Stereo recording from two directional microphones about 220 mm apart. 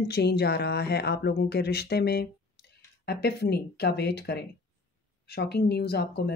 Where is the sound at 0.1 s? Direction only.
45° left (ahead or behind).